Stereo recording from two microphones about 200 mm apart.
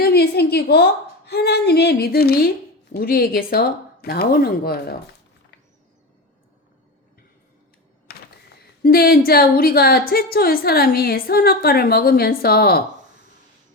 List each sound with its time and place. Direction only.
0.0 s a woman's voice: 50° left (ahead or behind)
8.8 s a woman's voice: 50° left (ahead or behind)